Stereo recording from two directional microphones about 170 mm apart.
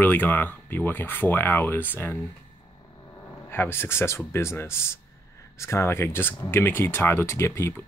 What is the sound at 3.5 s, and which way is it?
Speech, 15° left (ahead or behind).